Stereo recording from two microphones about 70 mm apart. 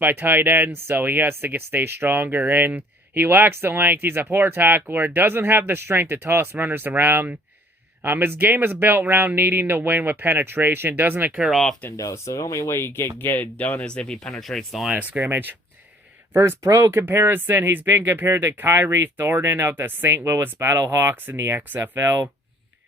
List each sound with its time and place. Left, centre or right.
0.0 s speech: right
11.9 s speech: left; by 14.9 s centre
14.9 s speech: right
19.0 s speech: right
20.6 s speech: right
21.2 s speech: right